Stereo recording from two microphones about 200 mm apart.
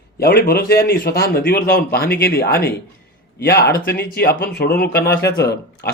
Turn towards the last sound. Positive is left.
turn(degrees=55)  # may be behind; listen again after turning